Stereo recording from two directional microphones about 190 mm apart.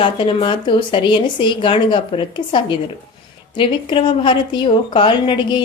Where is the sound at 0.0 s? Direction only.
25° left (ahead or behind).